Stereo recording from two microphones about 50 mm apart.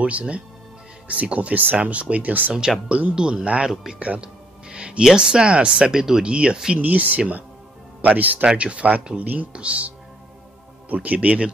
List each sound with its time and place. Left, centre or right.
0.0 s speech: right
2.5 s speech: centre
4.0 s music: right
5.0 s speech: centre
6.2 s speech: centre
6.8 s speech: right
8.5 s speech: right